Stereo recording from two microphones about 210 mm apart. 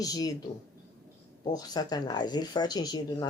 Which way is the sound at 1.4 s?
20° left (ahead or behind).